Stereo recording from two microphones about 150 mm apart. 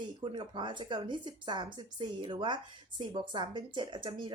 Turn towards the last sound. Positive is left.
turn(degrees=-30)  # may be behind; listen again after turning